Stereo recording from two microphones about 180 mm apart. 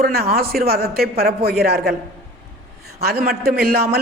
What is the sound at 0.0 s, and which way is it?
A man's voice, 60° right (ahead or behind).